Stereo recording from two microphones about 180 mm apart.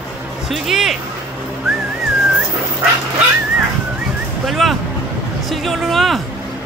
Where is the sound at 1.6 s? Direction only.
5° right (ahead or behind).